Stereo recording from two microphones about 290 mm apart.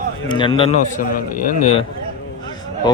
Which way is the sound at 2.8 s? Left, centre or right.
Centre.